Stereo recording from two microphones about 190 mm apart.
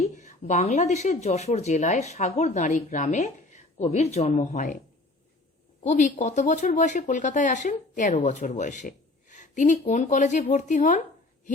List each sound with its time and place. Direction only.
0.0 s speech: 40° left (ahead or behind)
5.8 s speech: 40° left (ahead or behind)